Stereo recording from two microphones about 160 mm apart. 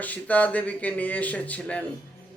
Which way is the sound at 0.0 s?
10° left (ahead or behind).